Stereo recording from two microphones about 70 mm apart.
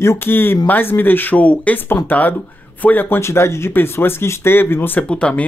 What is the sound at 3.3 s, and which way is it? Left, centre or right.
Speech, left.